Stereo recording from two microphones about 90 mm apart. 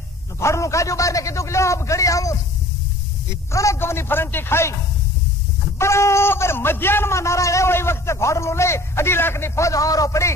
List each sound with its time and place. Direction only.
0.4 s speech: 35° left (ahead or behind)
3.5 s a man's voice: 30° left (ahead or behind)
5.8 s speech: 30° left (ahead or behind)